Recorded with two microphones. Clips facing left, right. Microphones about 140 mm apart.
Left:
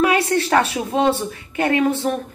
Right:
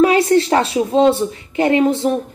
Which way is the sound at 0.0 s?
25° right (ahead or behind).